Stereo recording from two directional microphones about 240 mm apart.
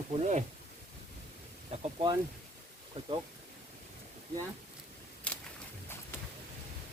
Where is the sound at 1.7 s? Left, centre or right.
Centre.